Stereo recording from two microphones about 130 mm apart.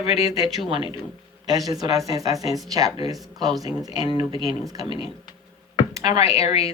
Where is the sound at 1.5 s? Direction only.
30° right (ahead or behind).